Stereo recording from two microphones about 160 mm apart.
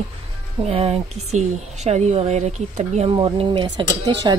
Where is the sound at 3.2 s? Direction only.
30° right (ahead or behind).